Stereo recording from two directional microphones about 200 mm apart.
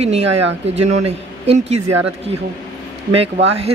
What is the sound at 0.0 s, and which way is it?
A man's voice, 30° right (ahead or behind).